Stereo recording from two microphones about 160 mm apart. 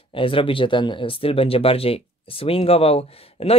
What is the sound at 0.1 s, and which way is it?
Speech, 35° left (ahead or behind).